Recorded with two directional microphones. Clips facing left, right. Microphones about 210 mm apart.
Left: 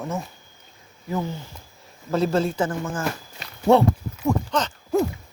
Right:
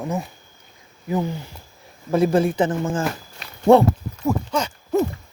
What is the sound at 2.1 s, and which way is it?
Speech, 15° right (ahead or behind).